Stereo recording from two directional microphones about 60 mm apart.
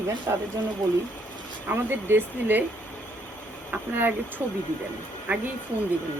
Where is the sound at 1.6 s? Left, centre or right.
Right.